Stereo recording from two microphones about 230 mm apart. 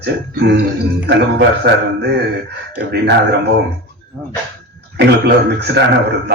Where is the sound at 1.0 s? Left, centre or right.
Right.